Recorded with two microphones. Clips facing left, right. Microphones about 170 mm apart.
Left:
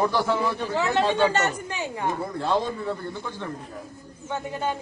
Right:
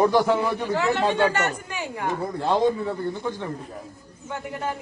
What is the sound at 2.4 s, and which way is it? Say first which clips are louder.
A man's voice: right 5 dB; 15° right (ahead or behind).